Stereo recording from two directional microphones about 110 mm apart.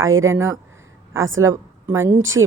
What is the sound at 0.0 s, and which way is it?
Speech, 25° right (ahead or behind).